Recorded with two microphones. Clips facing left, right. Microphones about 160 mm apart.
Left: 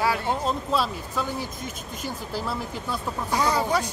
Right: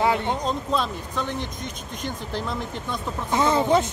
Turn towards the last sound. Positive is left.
turn(degrees=-25)  # may be behind; listen again after turning